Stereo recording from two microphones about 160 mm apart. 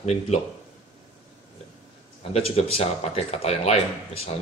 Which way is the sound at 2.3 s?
40° left (ahead or behind).